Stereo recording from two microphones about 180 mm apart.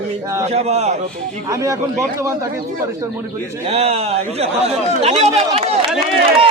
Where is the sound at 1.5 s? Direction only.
15° right (ahead or behind).